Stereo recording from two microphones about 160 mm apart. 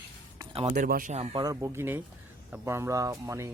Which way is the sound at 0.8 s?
60° right (ahead or behind).